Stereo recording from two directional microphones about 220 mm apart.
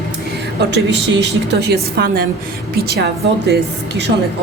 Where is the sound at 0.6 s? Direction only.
50° right (ahead or behind).